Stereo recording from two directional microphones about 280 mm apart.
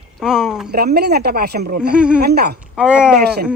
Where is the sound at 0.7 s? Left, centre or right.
Right.